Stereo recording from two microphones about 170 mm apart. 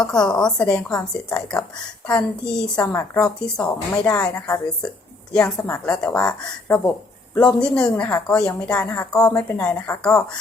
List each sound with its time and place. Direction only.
0.0 s a woman's voice: 5° left (ahead or behind)
3.7 s a woman's voice: 20° left (ahead or behind)
4.1 s a woman's voice: 5° left (ahead or behind)